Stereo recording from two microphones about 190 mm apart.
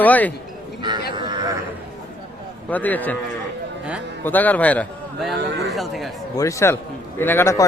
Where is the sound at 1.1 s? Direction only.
25° right (ahead or behind).